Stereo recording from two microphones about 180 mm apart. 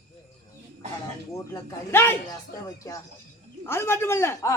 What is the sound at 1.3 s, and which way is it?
A man's voice, 15° left (ahead or behind).